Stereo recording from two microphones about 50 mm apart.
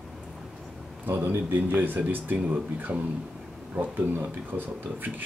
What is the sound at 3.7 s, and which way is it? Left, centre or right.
Speech, right.